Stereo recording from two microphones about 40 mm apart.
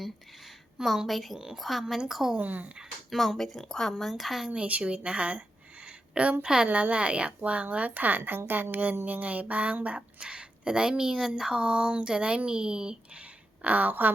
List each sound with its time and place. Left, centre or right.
1.0 s a woman's voice: centre
2.4 s a woman's voice: right
3.1 s speech: centre
3.9 s speech: centre
4.4 s speech: right
6.4 s speech: right
6.7 s a woman's voice: right
6.9 s speech: right
8.2 s a woman's voice: right; by 13.0 s centre
13.6 s a woman's voice: right